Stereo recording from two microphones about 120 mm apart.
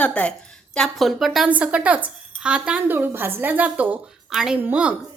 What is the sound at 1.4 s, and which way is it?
A woman's voice, 10° right (ahead or behind).